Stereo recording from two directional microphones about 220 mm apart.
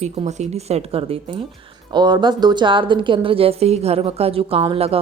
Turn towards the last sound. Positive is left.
turn(degrees=-25)  # may be behind; listen again after turning